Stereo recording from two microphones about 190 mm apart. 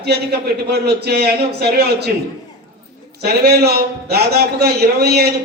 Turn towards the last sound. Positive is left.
turn(degrees=-55)  # may be behind; listen again after turning